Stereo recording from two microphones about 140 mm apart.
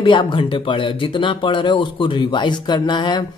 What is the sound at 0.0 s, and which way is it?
Speech, 35° left (ahead or behind).